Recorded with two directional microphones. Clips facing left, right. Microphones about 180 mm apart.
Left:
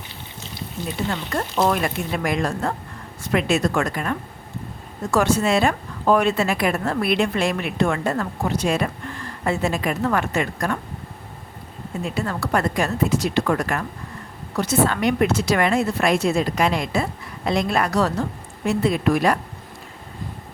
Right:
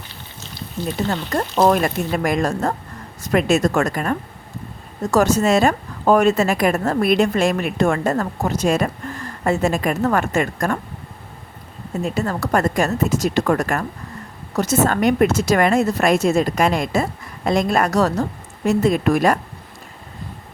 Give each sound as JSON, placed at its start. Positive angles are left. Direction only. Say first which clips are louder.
{"t": 0.9, "sound": "a woman's voice", "louder": "right 3 dB", "side_deg": -40}
{"t": 12.0, "sound": "a woman's voice", "louder": "right 3 dB", "side_deg": -40}